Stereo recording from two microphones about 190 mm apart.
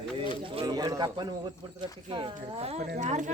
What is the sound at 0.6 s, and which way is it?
Speech, 20° right (ahead or behind).